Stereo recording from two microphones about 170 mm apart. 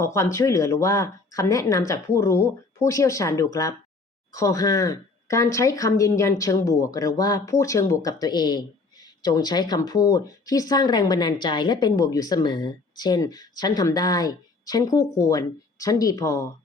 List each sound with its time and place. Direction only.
0.0 s speech: 15° left (ahead or behind)